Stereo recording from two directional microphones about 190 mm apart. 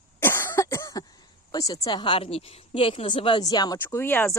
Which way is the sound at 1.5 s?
20° left (ahead or behind).